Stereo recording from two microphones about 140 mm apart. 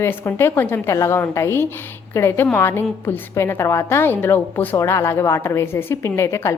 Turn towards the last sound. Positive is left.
turn(degrees=20)  # may be behind; listen again after turning